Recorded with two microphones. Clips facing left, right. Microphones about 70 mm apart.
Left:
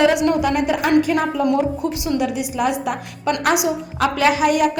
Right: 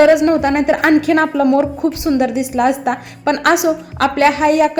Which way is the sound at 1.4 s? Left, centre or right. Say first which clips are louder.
Right 5 dB; right.